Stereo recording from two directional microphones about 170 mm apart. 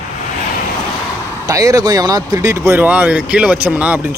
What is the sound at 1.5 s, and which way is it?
Speech, 20° right (ahead or behind).